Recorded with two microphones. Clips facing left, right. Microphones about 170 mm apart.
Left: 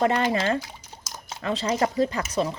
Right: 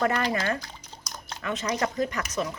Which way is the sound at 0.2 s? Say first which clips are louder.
Left 4 dB; 25° left (ahead or behind).